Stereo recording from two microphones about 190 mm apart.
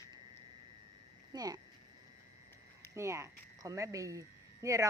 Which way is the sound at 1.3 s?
20° right (ahead or behind).